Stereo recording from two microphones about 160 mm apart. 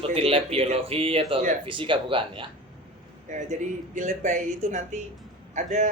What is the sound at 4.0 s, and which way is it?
Speech, 50° right (ahead or behind).